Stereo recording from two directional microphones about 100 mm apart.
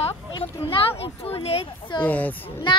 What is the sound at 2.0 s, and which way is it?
Speech, 15° left (ahead or behind).